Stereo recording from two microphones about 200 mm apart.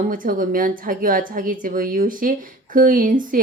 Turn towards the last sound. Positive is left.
turn(degrees=-40)  # may be behind; listen again after turning